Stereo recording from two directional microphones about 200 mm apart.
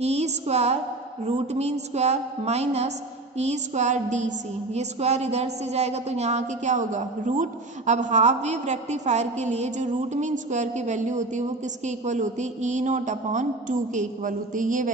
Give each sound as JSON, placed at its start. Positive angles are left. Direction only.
{"t": 0.0, "sound": "a woman's voice", "side_deg": -35}